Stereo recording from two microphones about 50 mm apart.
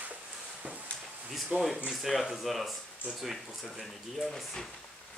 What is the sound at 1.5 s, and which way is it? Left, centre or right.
Speech, centre.